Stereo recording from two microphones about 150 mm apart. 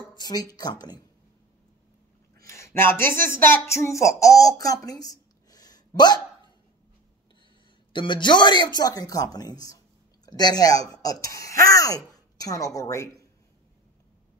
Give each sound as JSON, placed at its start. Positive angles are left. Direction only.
{"t": 0.1, "sound": "speech", "side_deg": 30}
{"t": 2.5, "sound": "a sound", "side_deg": 15}
{"t": 7.9, "sound": "speech", "side_deg": 30}